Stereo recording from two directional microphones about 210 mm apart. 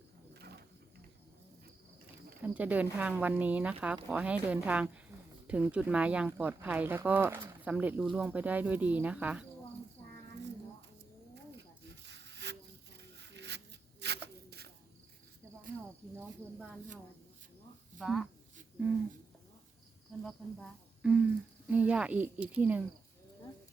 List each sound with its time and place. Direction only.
0.3 s wild animals: 50° right (ahead or behind)
2.4 s speech: 10° right (ahead or behind)
12.0 s a sound: 55° right (ahead or behind)
13.0 s zipper: 55° right (ahead or behind)
14.0 s a sound: 50° right (ahead or behind)
18.0 s speech: centre (ahead or behind)
20.2 s speech: centre (ahead or behind)